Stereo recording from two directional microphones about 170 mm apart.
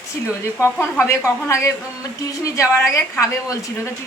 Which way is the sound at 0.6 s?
15° left (ahead or behind).